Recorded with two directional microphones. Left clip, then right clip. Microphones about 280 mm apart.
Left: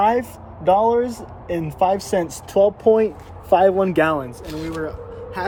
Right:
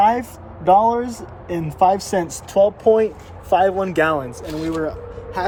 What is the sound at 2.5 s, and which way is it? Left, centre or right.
Speech, left.